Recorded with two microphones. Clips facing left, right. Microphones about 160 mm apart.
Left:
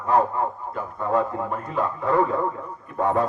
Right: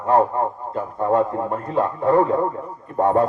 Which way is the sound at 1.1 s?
35° right (ahead or behind).